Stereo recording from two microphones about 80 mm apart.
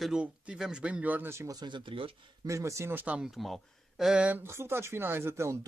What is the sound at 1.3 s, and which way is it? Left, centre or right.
Speech, right.